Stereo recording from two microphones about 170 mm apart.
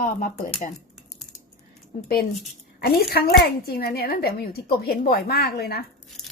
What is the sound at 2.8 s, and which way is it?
A woman's voice, 65° left (ahead or behind).